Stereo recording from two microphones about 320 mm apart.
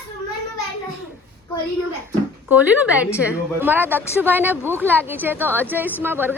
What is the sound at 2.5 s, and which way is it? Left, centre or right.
A woman's voice, centre.